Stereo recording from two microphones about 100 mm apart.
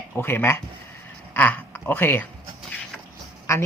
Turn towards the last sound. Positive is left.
turn(degrees=30)  # may be behind; listen again after turning